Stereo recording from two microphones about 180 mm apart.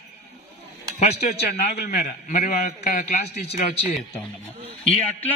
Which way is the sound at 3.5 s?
55° left (ahead or behind).